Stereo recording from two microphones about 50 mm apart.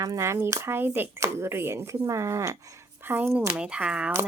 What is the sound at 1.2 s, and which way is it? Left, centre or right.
Speech, right.